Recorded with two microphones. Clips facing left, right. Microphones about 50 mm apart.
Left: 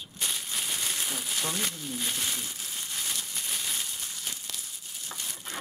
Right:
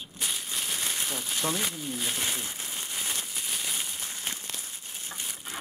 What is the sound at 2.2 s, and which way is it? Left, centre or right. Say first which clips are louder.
Speech: right 2 dB; right.